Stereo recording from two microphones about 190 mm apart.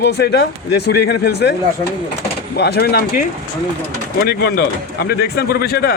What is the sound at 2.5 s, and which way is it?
Speech, 60° left (ahead or behind).